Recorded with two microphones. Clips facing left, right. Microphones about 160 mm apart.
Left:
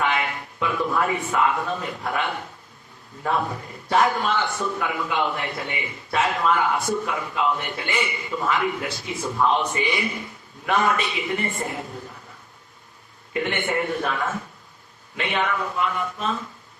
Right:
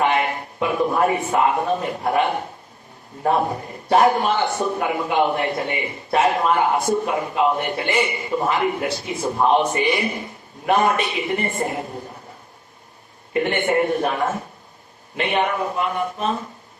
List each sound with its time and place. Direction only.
0.0 s a man's voice: 40° right (ahead or behind)
3.9 s a man's voice: 30° right (ahead or behind)
4.2 s a man's voice: 40° right (ahead or behind)
6.3 s a man's voice: 30° right (ahead or behind)
6.6 s a man's voice: 40° right (ahead or behind)
13.3 s a man's voice: 45° right (ahead or behind)